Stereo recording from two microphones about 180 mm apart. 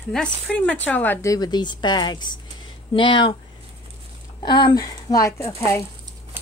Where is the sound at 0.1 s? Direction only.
5° left (ahead or behind); by 3.3 s 25° left (ahead or behind).